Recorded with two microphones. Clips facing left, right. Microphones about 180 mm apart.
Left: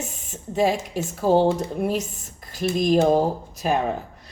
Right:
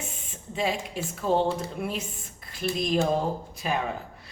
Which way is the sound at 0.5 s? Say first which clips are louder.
Left 7 dB; 40° left (ahead or behind).